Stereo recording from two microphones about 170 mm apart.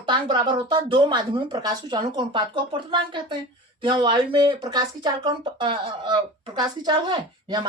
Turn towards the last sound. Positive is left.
turn(degrees=-25)  # may be behind; listen again after turning